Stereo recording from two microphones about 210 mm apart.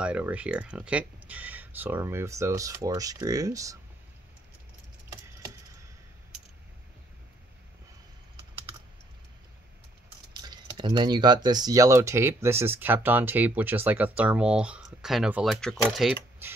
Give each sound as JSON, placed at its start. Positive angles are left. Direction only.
{"t": 0.0, "sound": "speech", "side_deg": -5}
{"t": 5.1, "sound": "a sound", "side_deg": -15}
{"t": 10.3, "sound": "speech", "side_deg": -20}